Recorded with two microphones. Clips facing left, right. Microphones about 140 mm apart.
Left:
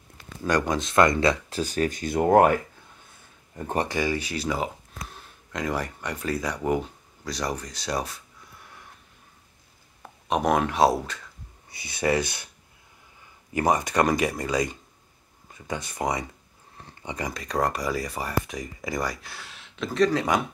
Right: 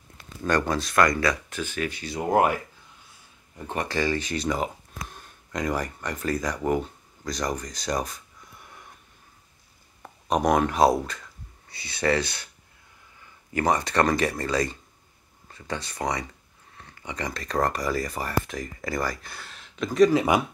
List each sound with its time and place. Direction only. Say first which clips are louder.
0.4 s speech: even; 15° left (ahead or behind)
1.6 s speech: left 4 dB; 40° left (ahead or behind)
3.9 s speech: right 1 dB; 10° left (ahead or behind)
10.0 s speech: right 1 dB; centre (ahead or behind)
11.7 s speech: even; 15° left (ahead or behind)
13.5 s speech: left 1 dB; 20° left (ahead or behind); by 20.4 s 5° right (ahead or behind)